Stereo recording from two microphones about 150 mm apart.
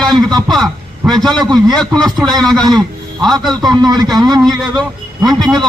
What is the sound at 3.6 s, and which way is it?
A man's voice, 30° right (ahead or behind).